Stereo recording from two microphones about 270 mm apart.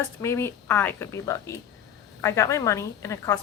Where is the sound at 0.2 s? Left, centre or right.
Centre.